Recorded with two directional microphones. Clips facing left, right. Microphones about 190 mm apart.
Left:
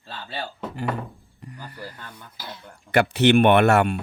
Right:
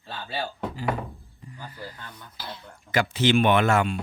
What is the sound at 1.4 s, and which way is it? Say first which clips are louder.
Speech: left 2 dB; 65° left (ahead or behind).